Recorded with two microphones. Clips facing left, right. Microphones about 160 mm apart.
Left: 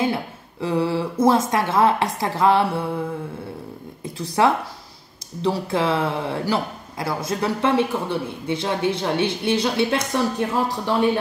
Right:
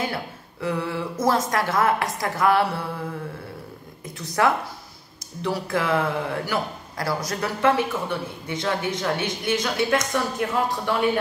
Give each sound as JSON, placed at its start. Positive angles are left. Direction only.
{"t": 0.0, "sound": "speech", "side_deg": 25}
{"t": 4.0, "sound": "a woman's voice", "side_deg": 30}